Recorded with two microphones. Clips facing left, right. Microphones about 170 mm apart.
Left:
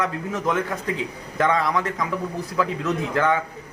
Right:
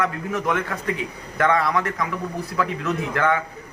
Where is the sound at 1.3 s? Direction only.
20° left (ahead or behind).